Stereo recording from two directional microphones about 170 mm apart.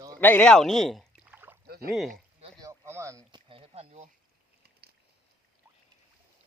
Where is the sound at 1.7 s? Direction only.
65° right (ahead or behind).